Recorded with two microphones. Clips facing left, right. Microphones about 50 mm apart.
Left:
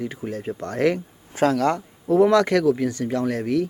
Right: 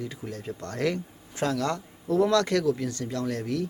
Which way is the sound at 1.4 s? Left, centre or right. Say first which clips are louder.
Left 8 dB; left.